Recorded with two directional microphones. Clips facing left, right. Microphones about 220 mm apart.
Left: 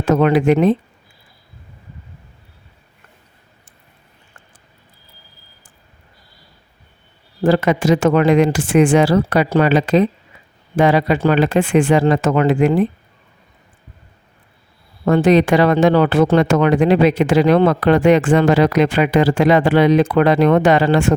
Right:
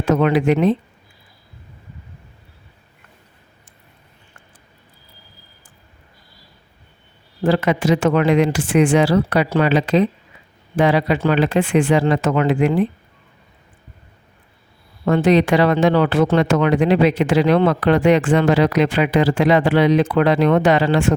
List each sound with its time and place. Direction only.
0.0 s speech: 45° left (ahead or behind)
7.4 s speech: 45° left (ahead or behind)
15.0 s speech: 45° left (ahead or behind)